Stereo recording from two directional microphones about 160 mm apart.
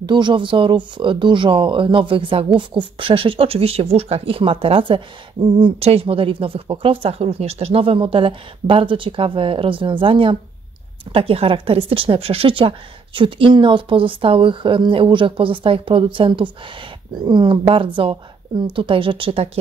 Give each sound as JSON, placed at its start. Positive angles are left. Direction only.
{"t": 0.0, "sound": "speech", "side_deg": -30}